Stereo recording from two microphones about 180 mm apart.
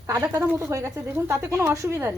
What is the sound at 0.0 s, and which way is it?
Speech, 15° right (ahead or behind).